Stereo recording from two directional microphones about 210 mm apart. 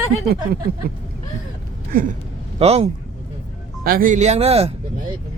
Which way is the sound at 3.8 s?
40° right (ahead or behind).